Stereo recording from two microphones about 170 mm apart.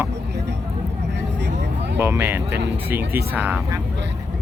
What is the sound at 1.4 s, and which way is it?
Vehicle, 90° right.